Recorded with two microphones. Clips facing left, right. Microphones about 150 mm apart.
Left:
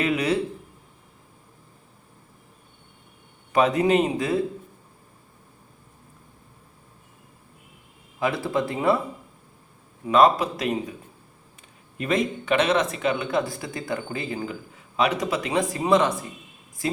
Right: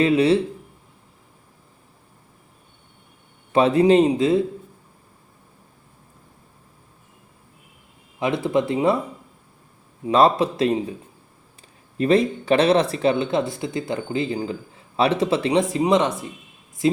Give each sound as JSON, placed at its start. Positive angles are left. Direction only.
{"t": 0.0, "sound": "a sound", "side_deg": -30}
{"t": 3.5, "sound": "speech", "side_deg": -30}
{"t": 8.2, "sound": "speech", "side_deg": -20}
{"t": 10.1, "sound": "speech", "side_deg": -30}
{"t": 11.9, "sound": "speech", "side_deg": -35}